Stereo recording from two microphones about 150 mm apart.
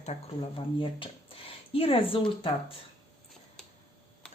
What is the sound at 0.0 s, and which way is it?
Speech, 45° left (ahead or behind).